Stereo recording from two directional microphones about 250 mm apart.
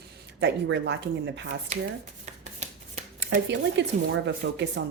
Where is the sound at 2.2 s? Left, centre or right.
Right.